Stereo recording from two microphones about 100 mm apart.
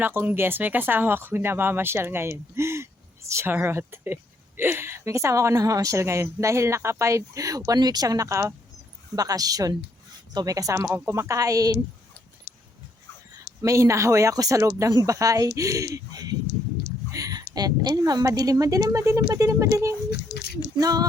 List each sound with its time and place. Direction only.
0.0 s speech: 20° right (ahead or behind); by 11.8 s 35° right (ahead or behind)
13.6 s speech: 30° right (ahead or behind)